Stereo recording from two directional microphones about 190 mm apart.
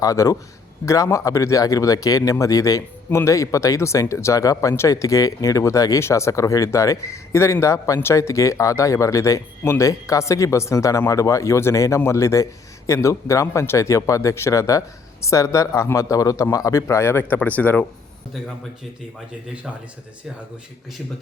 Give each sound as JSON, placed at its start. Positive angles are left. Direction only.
{"t": 0.0, "sound": "speech", "side_deg": 15}